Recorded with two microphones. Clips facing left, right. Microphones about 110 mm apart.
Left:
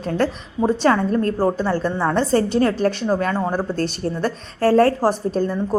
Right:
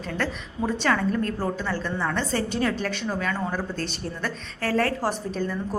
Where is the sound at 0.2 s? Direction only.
35° left (ahead or behind).